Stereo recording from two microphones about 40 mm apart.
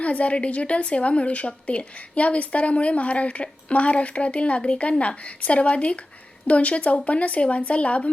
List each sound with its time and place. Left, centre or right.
0.0 s a woman's voice: left